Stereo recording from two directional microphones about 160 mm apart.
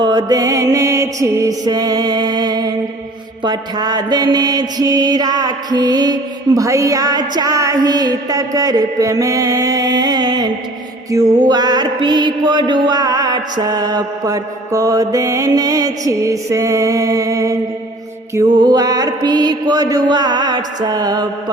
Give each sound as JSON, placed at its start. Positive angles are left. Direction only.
{"t": 0.0, "sound": "mantra", "side_deg": -25}